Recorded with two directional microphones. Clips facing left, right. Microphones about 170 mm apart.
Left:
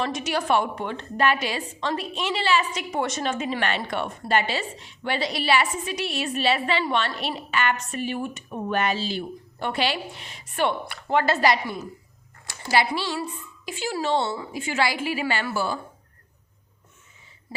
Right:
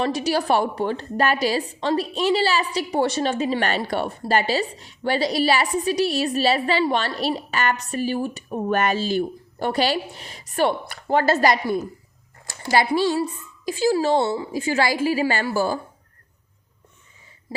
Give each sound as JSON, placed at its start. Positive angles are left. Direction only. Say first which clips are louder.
{"t": 0.0, "sound": "a woman's voice", "louder": "right 4 dB", "side_deg": -35}